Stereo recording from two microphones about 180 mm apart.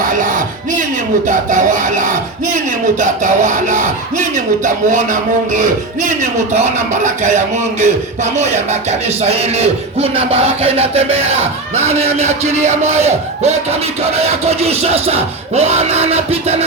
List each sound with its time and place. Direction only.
0.2 s music: 45° right (ahead or behind)
1.5 s speech: 45° right (ahead or behind)